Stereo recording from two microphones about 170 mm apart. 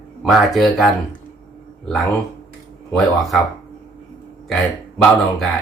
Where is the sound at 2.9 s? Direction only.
Centre (ahead or behind).